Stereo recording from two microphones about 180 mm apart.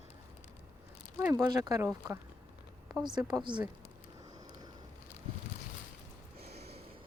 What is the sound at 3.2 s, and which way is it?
Speech, 25° right (ahead or behind).